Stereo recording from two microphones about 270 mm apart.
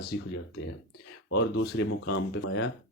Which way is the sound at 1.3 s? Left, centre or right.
Left.